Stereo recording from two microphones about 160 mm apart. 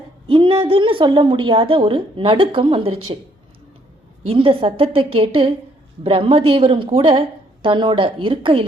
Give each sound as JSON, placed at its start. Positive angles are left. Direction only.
{"t": 0.3, "sound": "a woman's voice", "side_deg": -35}
{"t": 4.3, "sound": "a woman's voice", "side_deg": -35}